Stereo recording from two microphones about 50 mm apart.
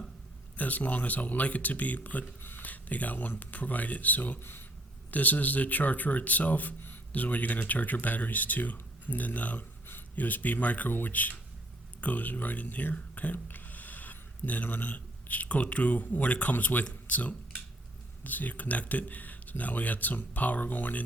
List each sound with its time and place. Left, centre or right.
0.5 s speech: left